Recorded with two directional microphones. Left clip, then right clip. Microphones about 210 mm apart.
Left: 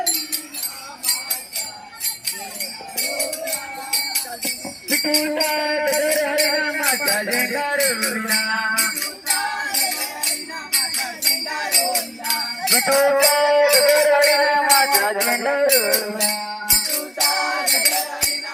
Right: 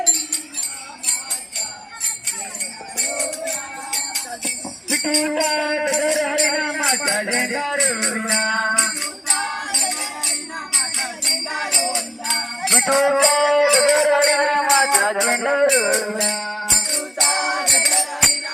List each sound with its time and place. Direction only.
1.0 s jingle bell: centre (ahead or behind)
3.0 s music: centre (ahead or behind)
16.0 s music: 20° right (ahead or behind)
16.9 s music: 5° right (ahead or behind)